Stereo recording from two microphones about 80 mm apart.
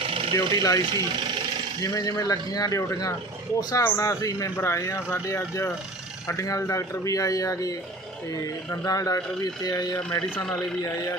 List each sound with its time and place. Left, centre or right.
0.3 s speech: left
8.7 s speech: left
10.1 s speech: left
10.8 s speech: left